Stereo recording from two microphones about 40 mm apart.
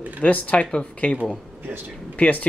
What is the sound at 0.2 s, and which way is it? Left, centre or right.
Speech, left.